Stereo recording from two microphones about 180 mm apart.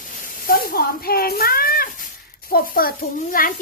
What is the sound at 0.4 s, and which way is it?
Speech, 55° left (ahead or behind).